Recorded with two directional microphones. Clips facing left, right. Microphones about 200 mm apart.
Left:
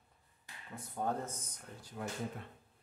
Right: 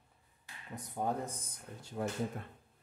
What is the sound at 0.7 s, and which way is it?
Speech, 15° right (ahead or behind).